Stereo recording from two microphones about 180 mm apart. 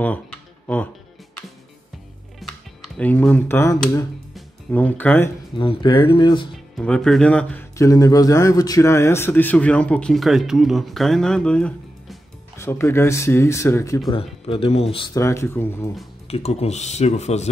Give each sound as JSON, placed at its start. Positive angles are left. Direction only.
{"t": 0.0, "sound": "a sound", "side_deg": 10}
{"t": 2.4, "sound": "music", "side_deg": 0}
{"t": 2.8, "sound": "speech", "side_deg": 10}
{"t": 5.6, "sound": "speech", "side_deg": 25}
{"t": 6.5, "sound": "speech", "side_deg": 5}
{"t": 14.1, "sound": "speech", "side_deg": 30}
{"t": 15.1, "sound": "speech", "side_deg": 15}
{"t": 16.3, "sound": "speech", "side_deg": 35}